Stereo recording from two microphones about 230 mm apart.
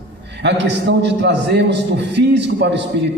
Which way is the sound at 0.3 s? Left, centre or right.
Right.